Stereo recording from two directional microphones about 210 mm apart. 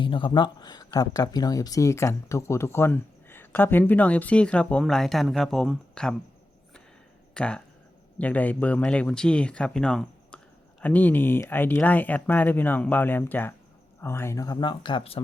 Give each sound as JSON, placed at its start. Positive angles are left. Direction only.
{"t": 0.0, "sound": "speech", "side_deg": 25}
{"t": 7.3, "sound": "speech", "side_deg": 5}